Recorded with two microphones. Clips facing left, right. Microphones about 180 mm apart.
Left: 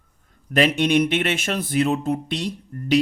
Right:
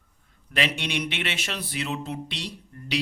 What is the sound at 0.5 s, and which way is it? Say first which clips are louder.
Speech: left 10 dB; 45° left (ahead or behind).